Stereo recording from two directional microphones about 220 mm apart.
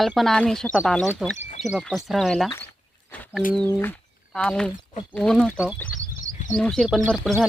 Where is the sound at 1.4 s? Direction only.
30° left (ahead or behind).